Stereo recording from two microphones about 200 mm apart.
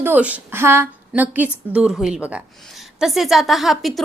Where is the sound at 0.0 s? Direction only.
10° right (ahead or behind).